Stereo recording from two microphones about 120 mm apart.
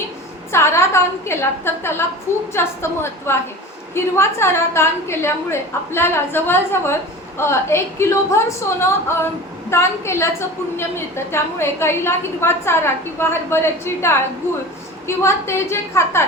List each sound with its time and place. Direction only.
0.5 s a woman's voice: 20° left (ahead or behind)